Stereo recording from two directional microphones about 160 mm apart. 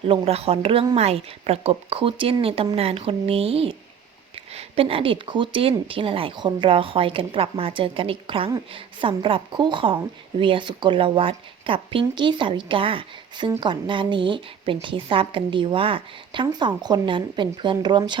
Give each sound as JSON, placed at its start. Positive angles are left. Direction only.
{"t": 0.1, "sound": "a woman's voice", "side_deg": -40}